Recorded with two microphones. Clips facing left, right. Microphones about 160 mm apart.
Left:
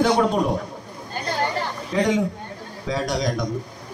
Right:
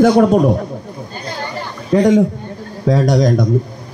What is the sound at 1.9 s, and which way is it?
A man's voice, 45° right (ahead or behind).